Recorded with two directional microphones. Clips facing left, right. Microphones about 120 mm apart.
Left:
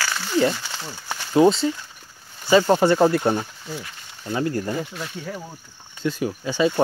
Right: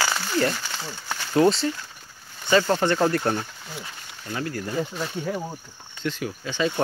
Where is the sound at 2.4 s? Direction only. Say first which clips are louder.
Left 4 dB; 15° left (ahead or behind).